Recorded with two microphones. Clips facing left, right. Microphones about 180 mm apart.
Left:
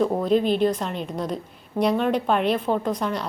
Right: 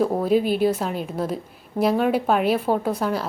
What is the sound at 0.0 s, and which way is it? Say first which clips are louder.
A woman's voice: right 1 dB; 5° right (ahead or behind).